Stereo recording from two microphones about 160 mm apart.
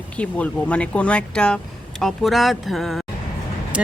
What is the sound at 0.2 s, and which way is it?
Speech, 10° left (ahead or behind).